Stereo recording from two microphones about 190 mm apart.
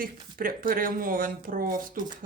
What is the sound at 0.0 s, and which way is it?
Speech, 50° right (ahead or behind).